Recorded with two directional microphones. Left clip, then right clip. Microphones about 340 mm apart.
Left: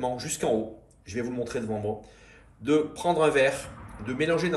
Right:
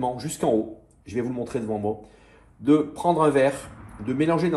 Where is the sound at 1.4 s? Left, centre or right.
Centre.